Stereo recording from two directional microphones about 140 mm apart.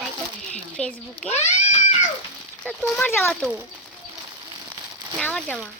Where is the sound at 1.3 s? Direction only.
55° left (ahead or behind).